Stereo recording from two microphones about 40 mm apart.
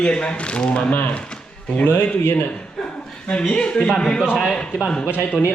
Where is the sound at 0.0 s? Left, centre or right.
Left.